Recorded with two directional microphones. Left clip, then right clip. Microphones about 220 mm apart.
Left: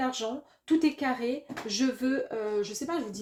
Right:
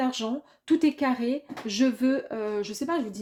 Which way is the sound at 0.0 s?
45° right (ahead or behind).